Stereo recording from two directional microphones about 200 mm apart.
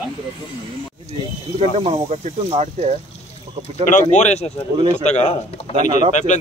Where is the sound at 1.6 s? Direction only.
30° right (ahead or behind).